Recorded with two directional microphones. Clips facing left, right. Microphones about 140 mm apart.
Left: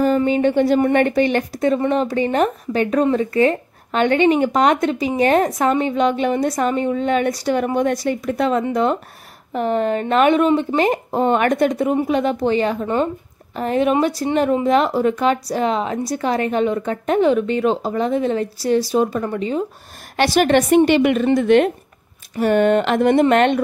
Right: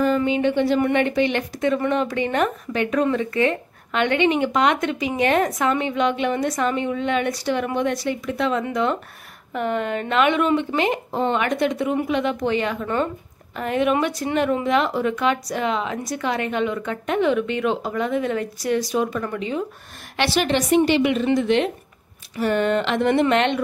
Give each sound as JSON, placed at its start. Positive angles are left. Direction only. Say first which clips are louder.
{"t": 0.0, "sound": "a woman's voice", "louder": "left 3 dB", "side_deg": 40}